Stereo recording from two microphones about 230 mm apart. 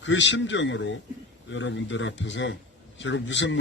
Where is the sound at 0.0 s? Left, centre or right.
Left.